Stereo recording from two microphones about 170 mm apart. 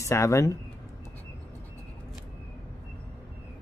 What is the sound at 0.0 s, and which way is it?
Speech, 15° left (ahead or behind).